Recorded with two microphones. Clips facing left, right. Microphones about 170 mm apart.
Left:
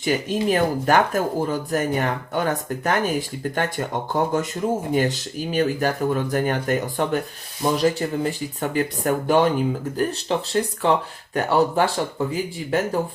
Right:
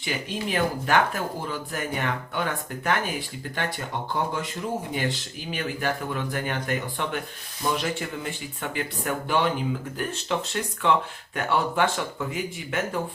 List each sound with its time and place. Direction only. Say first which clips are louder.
0.0 s speech: left 8 dB; 45° left (ahead or behind)